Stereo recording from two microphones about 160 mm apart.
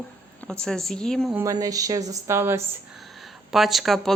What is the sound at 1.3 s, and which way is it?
Speech, 20° right (ahead or behind).